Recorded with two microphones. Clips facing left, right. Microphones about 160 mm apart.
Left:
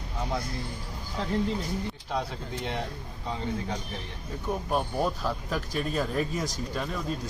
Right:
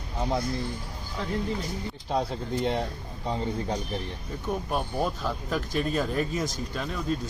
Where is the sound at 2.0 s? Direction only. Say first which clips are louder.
Right 8 dB; 35° right (ahead or behind).